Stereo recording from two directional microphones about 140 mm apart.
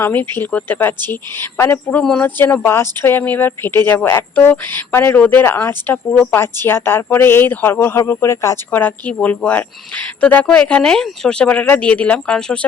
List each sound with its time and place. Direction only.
0.0 s speech: 15° left (ahead or behind)